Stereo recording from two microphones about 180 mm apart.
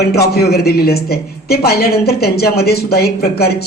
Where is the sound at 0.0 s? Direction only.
60° left (ahead or behind).